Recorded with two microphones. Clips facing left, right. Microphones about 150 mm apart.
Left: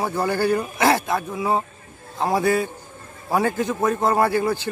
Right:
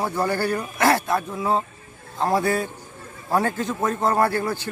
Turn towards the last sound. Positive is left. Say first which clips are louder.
# left 2 dB
turn(degrees=15)  # may be behind; listen again after turning